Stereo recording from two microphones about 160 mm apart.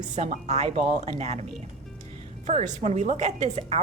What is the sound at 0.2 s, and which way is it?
Speech, 45° right (ahead or behind).